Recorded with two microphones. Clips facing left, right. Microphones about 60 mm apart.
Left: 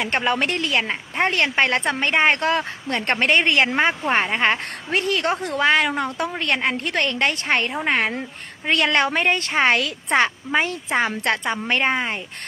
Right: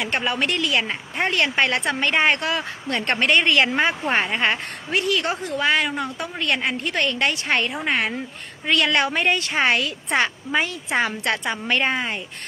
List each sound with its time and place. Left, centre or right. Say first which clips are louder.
0.0 s a woman's voice: left 2 dB; left
9.8 s a woman's voice: left 1 dB; left
10.1 s a woman's voice: left 2 dB; left